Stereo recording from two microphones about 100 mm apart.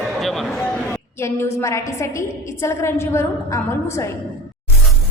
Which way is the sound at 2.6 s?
25° left (ahead or behind).